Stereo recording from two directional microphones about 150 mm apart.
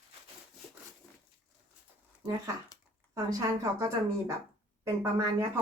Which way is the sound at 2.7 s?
25° left (ahead or behind).